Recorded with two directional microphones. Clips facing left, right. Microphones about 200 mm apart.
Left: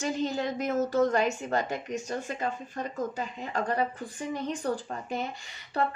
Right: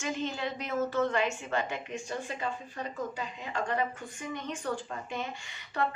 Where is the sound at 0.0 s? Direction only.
35° left (ahead or behind).